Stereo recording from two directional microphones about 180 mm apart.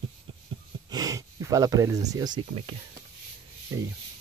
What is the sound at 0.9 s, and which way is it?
Speech, 20° right (ahead or behind).